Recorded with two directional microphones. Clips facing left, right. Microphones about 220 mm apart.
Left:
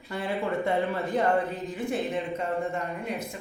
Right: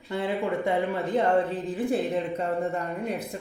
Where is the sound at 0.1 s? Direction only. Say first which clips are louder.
Right 2 dB; 20° right (ahead or behind).